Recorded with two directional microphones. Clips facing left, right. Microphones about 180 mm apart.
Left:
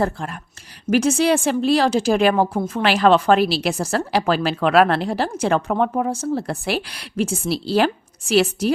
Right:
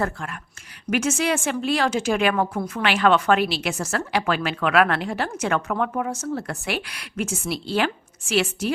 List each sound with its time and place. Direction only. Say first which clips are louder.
0.0 s a woman's voice: left 4 dB; 35° left (ahead or behind)